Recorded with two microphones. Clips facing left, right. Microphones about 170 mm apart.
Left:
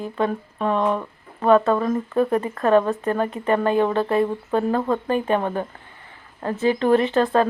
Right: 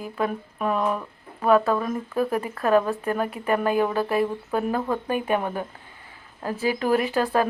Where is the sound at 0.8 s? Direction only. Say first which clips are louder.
Left 4 dB; 25° left (ahead or behind).